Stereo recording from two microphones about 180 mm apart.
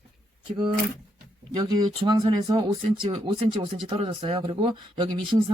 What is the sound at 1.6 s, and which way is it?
Speech, 20° right (ahead or behind).